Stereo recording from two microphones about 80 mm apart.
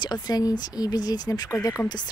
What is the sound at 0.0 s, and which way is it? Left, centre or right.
Speech, left.